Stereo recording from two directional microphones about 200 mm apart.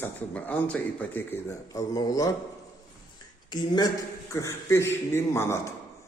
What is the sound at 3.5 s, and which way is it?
A man's voice, 20° left (ahead or behind).